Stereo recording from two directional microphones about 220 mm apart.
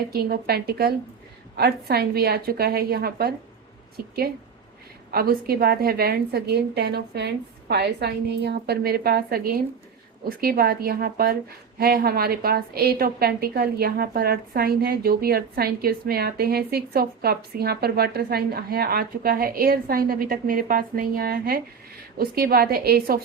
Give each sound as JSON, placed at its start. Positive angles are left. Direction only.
{"t": 0.1, "sound": "a woman's voice", "side_deg": -45}